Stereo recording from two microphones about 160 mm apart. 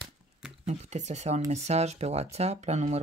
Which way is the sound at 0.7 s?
45° right (ahead or behind).